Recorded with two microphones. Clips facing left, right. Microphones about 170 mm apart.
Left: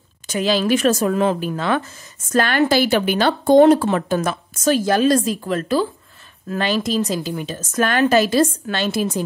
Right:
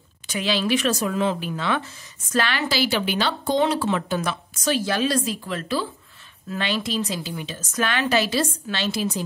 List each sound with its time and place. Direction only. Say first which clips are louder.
0.3 s speech: left 5 dB; 45° left (ahead or behind)